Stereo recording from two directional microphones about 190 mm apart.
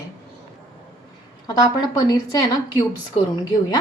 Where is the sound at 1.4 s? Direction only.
20° left (ahead or behind).